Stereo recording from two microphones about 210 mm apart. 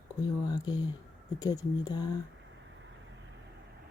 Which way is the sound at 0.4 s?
20° left (ahead or behind).